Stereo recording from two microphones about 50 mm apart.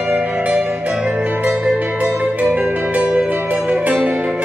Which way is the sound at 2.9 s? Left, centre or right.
Right.